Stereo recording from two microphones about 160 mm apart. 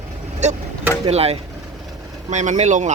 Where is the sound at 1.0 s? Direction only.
40° right (ahead or behind).